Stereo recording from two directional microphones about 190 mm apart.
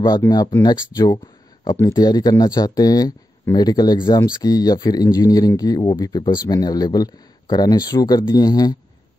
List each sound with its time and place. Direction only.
0.3 s speech: 20° left (ahead or behind)